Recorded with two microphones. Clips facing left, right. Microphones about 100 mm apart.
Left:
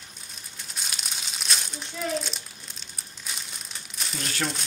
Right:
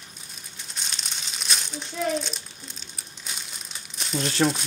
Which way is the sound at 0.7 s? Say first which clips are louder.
Even; 5° left (ahead or behind).